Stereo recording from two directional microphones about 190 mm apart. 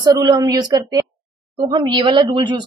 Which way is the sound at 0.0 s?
20° right (ahead or behind).